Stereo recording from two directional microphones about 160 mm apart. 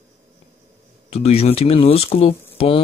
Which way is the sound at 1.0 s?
40° left (ahead or behind).